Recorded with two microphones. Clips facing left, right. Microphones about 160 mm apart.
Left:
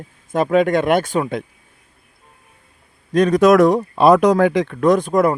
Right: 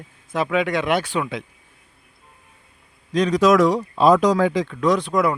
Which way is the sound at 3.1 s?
55° left (ahead or behind).